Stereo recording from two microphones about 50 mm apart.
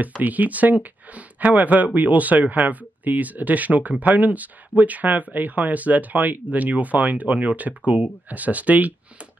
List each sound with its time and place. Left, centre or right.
0.2 s speech: right